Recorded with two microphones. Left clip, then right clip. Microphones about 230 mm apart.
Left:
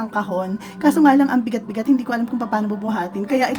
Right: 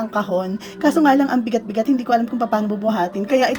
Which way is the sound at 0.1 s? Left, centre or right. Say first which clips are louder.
Even; centre.